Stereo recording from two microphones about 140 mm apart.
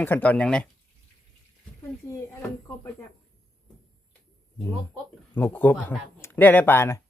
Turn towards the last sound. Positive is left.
turn(degrees=20)  # may be behind; listen again after turning